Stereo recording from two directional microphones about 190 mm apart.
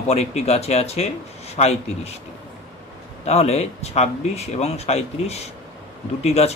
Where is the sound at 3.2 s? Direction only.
35° left (ahead or behind).